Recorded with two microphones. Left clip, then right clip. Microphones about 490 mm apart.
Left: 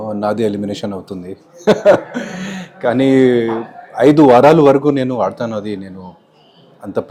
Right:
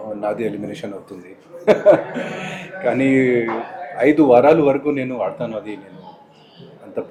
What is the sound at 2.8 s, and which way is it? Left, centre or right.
A man's voice, left.